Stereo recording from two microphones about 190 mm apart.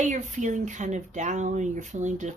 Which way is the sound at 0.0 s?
40° right (ahead or behind).